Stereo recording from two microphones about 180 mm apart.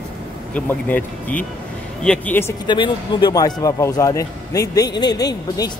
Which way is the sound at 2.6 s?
25° left (ahead or behind).